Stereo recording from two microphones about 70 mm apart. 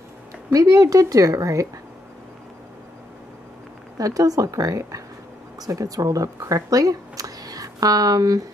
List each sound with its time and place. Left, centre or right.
0.5 s a woman's voice: right
4.0 s a woman's voice: right